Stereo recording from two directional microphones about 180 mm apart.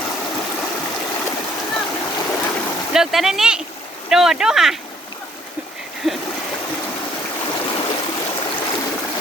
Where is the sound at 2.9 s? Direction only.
Centre (ahead or behind).